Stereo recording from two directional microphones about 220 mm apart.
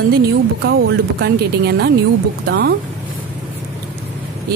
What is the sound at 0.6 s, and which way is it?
Speech, 50° right (ahead or behind).